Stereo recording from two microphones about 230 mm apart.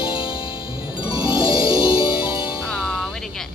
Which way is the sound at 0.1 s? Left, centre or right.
Left.